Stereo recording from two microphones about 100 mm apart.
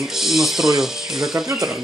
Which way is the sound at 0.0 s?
5° right (ahead or behind).